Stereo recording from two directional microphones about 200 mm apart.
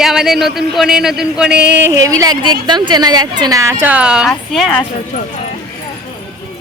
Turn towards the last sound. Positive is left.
turn(degrees=0)  # may be behind; listen again after turning